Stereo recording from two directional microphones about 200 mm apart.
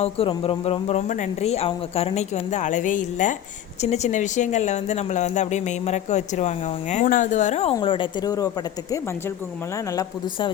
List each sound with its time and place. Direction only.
0.0 s speech: 30° left (ahead or behind)